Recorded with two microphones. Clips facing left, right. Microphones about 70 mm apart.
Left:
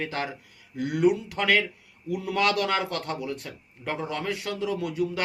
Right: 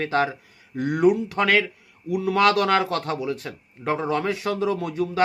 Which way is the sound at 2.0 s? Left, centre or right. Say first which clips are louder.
Right 6 dB; right.